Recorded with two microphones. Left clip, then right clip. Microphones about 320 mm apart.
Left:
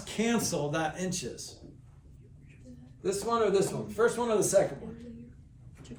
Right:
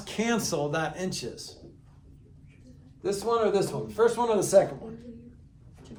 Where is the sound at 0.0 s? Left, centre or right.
Right.